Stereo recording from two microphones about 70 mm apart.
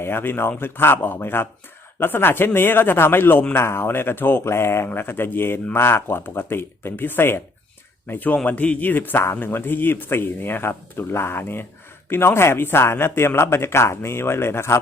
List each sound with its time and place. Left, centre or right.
0.0 s speech: left